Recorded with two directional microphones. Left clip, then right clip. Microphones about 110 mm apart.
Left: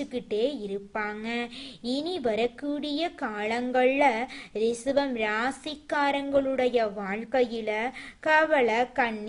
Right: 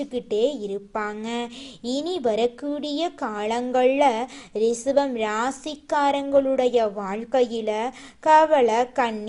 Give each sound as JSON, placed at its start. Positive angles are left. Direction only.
{"t": 0.0, "sound": "a woman's voice", "side_deg": -20}